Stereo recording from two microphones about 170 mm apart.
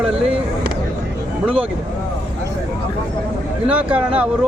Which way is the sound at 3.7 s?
10° right (ahead or behind).